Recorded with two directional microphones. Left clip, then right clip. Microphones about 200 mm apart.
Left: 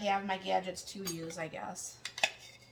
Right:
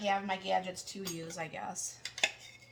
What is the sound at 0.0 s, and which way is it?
A woman's voice, 20° right (ahead or behind).